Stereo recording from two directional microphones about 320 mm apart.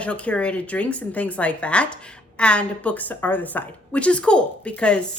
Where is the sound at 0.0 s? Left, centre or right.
Centre.